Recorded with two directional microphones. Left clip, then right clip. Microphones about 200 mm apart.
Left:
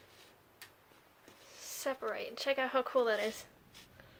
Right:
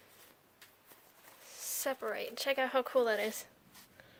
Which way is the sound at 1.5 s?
40° right (ahead or behind).